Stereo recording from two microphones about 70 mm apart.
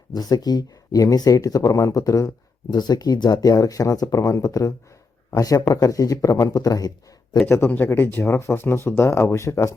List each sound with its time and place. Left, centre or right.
0.1 s speech: left
2.7 s speech: left
7.4 s speech: left